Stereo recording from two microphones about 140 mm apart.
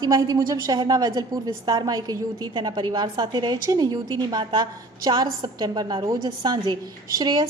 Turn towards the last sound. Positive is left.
turn(degrees=-30)  # may be behind; listen again after turning